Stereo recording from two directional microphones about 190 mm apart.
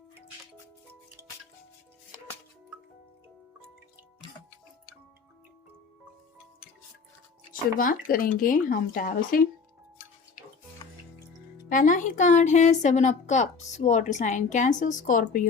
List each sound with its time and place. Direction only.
7.8 s speech: 45° left (ahead or behind)
11.7 s speech: 45° left (ahead or behind)